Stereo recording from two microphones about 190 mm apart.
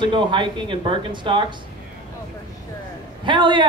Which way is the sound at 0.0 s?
25° right (ahead or behind).